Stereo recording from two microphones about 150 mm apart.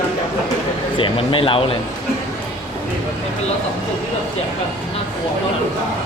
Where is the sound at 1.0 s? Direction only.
35° left (ahead or behind).